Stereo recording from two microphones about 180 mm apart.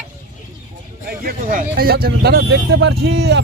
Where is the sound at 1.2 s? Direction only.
50° right (ahead or behind); by 3.4 s 70° right (ahead or behind).